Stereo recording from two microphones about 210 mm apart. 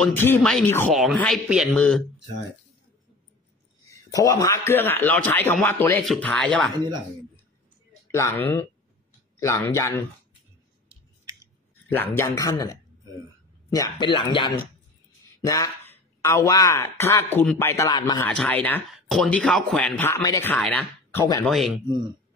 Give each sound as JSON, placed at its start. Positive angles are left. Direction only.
{"t": 0.0, "sound": "a man's voice", "side_deg": 10}
{"t": 3.9, "sound": "a man's voice", "side_deg": 15}
{"t": 8.1, "sound": "speech", "side_deg": 10}
{"t": 11.9, "sound": "speech", "side_deg": 10}
{"t": 18.3, "sound": "speech", "side_deg": 5}
{"t": 21.5, "sound": "a man's voice", "side_deg": 0}